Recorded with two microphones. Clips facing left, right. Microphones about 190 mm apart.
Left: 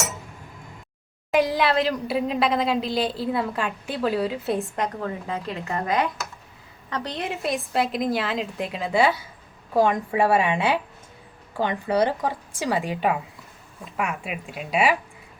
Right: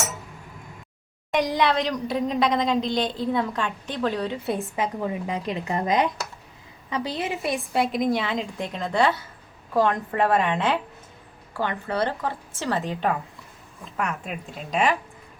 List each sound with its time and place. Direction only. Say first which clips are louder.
1.3 s a woman's voice: left 1 dB; centre (ahead or behind)
4.9 s speech: right 2 dB; 15° right (ahead or behind)
6.9 s a woman's voice: right 2 dB; 5° right (ahead or behind)